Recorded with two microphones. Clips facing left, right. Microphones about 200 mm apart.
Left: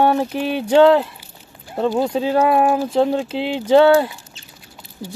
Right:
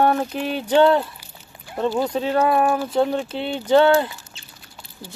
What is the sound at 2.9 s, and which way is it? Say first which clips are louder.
Speech: left 3 dB; 25° left (ahead or behind).